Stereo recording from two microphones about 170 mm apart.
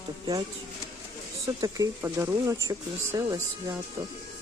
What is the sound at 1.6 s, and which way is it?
Speech, 15° right (ahead or behind).